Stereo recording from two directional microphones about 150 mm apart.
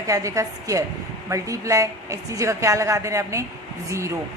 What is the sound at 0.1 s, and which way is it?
A woman's voice, 20° right (ahead or behind).